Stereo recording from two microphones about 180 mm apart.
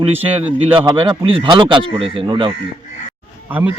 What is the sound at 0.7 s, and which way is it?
A man's voice, 30° right (ahead or behind).